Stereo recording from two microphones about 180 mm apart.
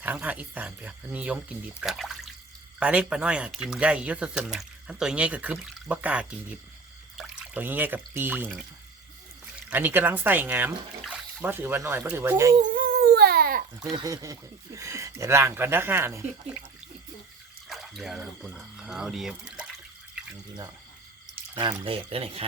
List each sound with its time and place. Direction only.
0.0 s speech: 10° right (ahead or behind)
9.6 s speech: 10° right (ahead or behind)
12.5 s dog: 45° right (ahead or behind)
13.9 s speech: 20° right (ahead or behind)
17.7 s speech: centre (ahead or behind)
20.1 s drip: 5° right (ahead or behind)
21.5 s speech: 25° right (ahead or behind)